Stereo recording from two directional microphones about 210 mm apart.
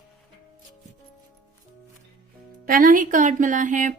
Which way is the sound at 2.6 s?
40° right (ahead or behind).